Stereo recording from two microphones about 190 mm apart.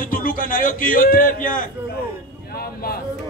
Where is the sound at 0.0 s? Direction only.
45° left (ahead or behind).